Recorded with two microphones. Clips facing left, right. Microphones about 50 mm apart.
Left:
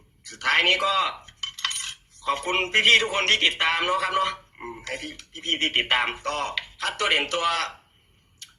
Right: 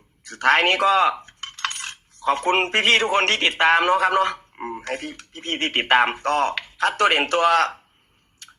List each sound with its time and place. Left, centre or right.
0.3 s cutlery: right
4.5 s speech: right